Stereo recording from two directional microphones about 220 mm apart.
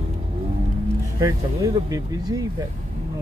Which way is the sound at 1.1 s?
15° right (ahead or behind).